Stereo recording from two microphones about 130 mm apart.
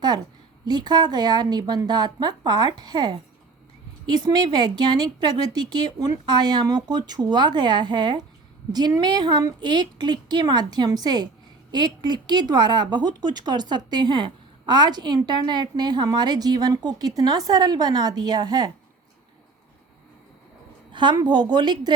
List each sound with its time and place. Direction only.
0.6 s speech: 35° right (ahead or behind)
20.9 s speech: 35° right (ahead or behind)